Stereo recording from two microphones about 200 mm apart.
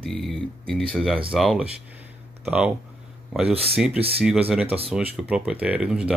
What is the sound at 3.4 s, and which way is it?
Speech, 30° right (ahead or behind).